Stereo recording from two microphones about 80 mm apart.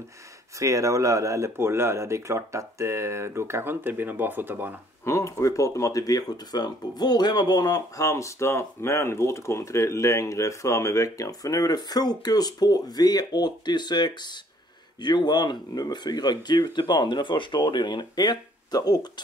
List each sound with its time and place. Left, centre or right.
0.6 s speech: right
5.0 s speech: left